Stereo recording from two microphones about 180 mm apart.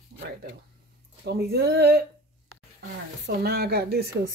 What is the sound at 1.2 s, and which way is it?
Speech, 65° right (ahead or behind).